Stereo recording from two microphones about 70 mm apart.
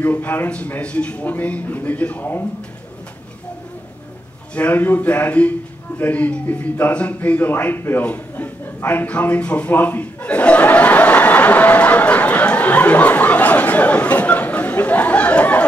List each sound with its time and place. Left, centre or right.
0.0 s a man's voice: left
4.6 s speech: left